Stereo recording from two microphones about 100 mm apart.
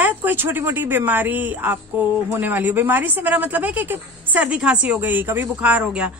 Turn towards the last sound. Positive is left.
turn(degrees=-10)  # may be behind; listen again after turning